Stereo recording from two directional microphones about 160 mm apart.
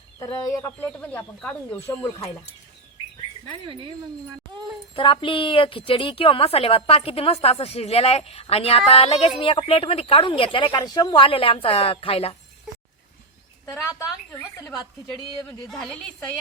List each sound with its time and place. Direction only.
0.5 s a woman's voice: 15° left (ahead or behind)
3.5 s speech: 30° right (ahead or behind)
4.9 s a woman's voice: 35° left (ahead or behind)
13.7 s a woman's voice: 15° left (ahead or behind)